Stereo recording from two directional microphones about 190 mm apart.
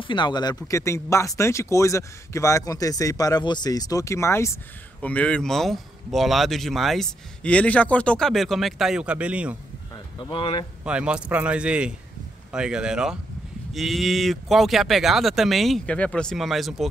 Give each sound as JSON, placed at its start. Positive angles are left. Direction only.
{"t": 0.0, "sound": "a man's voice", "side_deg": 25}
{"t": 10.3, "sound": "speech", "side_deg": 30}
{"t": 10.8, "sound": "a man's voice", "side_deg": -5}